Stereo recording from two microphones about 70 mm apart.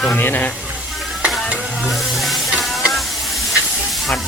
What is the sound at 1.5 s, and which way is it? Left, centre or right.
Stir, centre.